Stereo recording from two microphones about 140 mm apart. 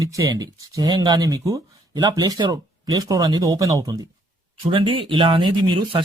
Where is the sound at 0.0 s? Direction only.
25° right (ahead or behind).